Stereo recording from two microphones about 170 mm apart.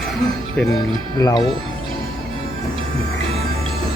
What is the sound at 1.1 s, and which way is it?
Speech, 20° left (ahead or behind).